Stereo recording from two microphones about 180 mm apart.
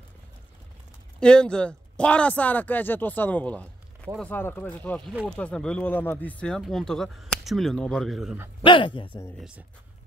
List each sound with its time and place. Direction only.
1.2 s speech: 5° left (ahead or behind)
8.6 s speech: 25° left (ahead or behind)